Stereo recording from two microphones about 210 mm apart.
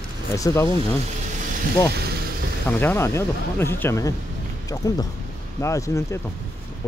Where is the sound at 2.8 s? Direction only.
10° left (ahead or behind).